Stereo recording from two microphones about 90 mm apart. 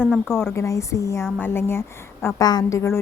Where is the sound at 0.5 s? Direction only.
35° left (ahead or behind).